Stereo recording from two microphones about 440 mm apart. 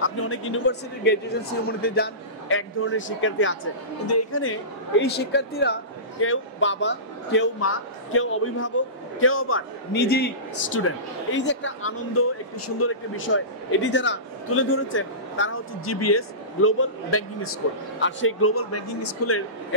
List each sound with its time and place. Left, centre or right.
0.0 s a man's voice: left